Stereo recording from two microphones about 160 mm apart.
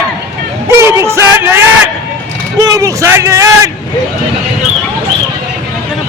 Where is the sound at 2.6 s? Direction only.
20° right (ahead or behind).